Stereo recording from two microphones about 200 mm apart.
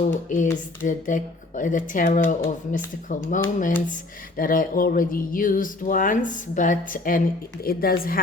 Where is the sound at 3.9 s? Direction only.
45° left (ahead or behind).